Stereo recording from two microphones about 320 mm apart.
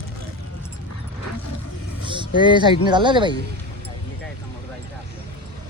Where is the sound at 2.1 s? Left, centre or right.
Centre.